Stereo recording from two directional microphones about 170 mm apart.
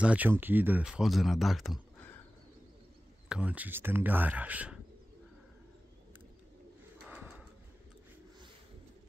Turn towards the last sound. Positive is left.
turn(degrees=-5)  # may be behind; listen again after turning